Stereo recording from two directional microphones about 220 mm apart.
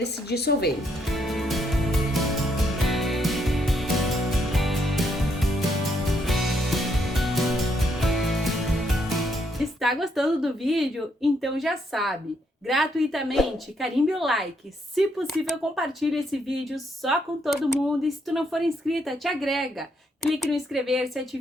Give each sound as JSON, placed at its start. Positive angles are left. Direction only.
{"t": 0.0, "sound": "a woman's voice", "side_deg": 45}
{"t": 1.1, "sound": "music", "side_deg": 0}
{"t": 12.6, "sound": "speech", "side_deg": 0}